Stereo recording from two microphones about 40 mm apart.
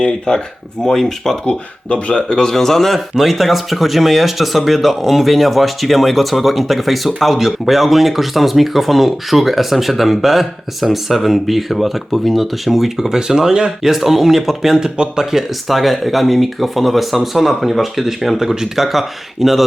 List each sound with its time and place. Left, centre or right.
0.0 s speech: centre
1.5 s speech: left
2.4 s speech: centre
13.8 s speech: centre
14.8 s speech: right
15.2 s speech: centre